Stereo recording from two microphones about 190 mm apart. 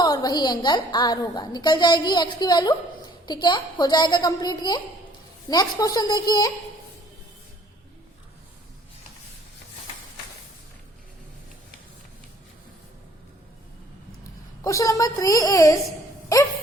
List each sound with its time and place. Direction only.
0.0 s a woman's voice: 20° left (ahead or behind)
14.6 s speech: 15° left (ahead or behind)